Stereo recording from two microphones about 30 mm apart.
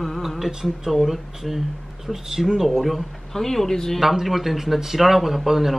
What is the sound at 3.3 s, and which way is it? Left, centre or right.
Speech, centre.